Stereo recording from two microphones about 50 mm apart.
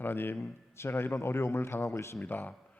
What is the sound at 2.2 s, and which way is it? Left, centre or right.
Speech, left.